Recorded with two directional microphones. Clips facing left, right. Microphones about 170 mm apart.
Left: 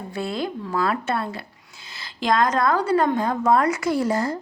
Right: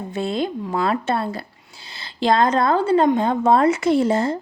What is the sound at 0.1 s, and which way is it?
A woman's voice, 25° right (ahead or behind).